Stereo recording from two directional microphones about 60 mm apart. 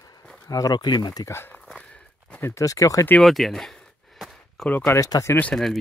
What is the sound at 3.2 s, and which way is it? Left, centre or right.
Speech, centre.